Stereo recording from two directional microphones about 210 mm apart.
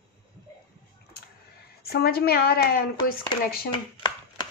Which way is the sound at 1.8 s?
50° left (ahead or behind).